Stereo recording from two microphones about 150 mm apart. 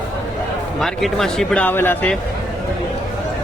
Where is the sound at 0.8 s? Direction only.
Centre (ahead or behind).